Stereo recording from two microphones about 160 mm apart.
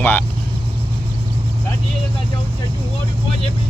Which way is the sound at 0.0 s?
10° left (ahead or behind).